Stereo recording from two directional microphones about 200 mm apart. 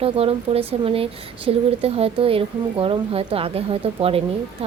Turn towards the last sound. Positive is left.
turn(degrees=-30)  # may be behind; listen again after turning